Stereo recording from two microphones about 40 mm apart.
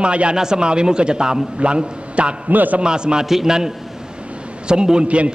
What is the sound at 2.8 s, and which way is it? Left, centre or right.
A man's voice, right.